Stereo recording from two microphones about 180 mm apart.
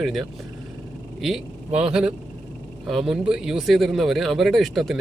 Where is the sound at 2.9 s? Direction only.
Centre (ahead or behind).